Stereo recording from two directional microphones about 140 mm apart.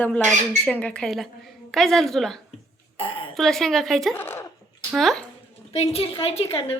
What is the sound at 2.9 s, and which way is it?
Speech, 40° left (ahead or behind).